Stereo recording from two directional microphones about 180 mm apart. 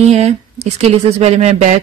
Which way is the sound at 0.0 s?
40° right (ahead or behind).